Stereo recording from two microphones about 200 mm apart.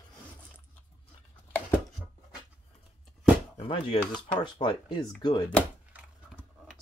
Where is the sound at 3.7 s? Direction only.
25° left (ahead or behind).